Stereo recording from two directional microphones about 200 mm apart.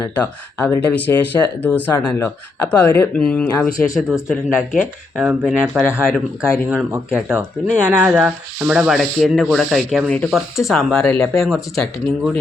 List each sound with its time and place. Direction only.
0.1 s speech: 5° left (ahead or behind)
3.2 s rub: 5° left (ahead or behind)
3.7 s speech: 40° left (ahead or behind)
4.1 s rub: 5° right (ahead or behind)
6.7 s speech: 10° right (ahead or behind)
7.9 s rub: 5° right (ahead or behind)